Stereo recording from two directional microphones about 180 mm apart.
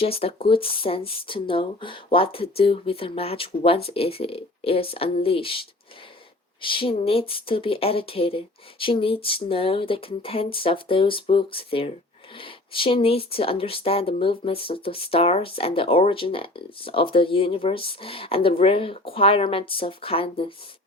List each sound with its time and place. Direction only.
0.0 s speech: 30° left (ahead or behind)